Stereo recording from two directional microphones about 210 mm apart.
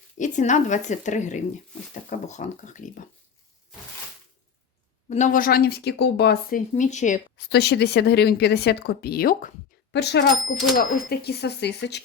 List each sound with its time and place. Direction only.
0.2 s speech: 35° left (ahead or behind)
5.0 s speech: 35° left (ahead or behind)
7.3 s speech: 50° left (ahead or behind)